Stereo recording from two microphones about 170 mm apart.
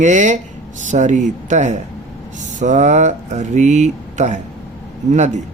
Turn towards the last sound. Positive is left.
turn(degrees=-45)  # may be behind; listen again after turning